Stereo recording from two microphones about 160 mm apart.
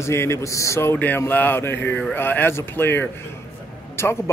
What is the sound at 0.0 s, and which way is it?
Speech, 15° left (ahead or behind).